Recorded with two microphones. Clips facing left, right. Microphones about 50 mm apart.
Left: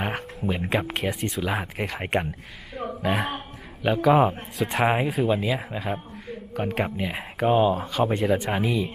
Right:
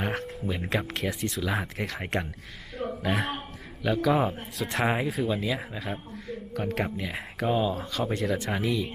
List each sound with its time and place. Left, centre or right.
0.0 s a sound: centre
0.4 s speech: centre
2.7 s throat clearing: centre
3.8 s speech: left
4.5 s speech: centre
4.9 s speech: left
5.7 s a sound: centre
6.7 s speech: centre
7.4 s speech: left
8.1 s speech: centre